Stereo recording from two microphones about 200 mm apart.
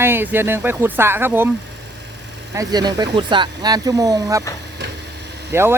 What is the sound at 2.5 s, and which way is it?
Speech, 20° right (ahead or behind).